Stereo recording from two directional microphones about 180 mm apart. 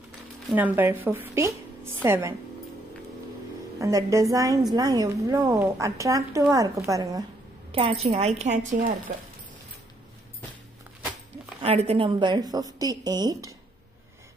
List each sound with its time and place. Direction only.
0.5 s speech: 10° right (ahead or behind)
3.8 s a woman's voice: 15° right (ahead or behind)
7.7 s speech: 35° right (ahead or behind)
9.1 s speech: 55° right (ahead or behind)
11.6 s a woman's voice: 35° right (ahead or behind); by 13.6 s 20° right (ahead or behind)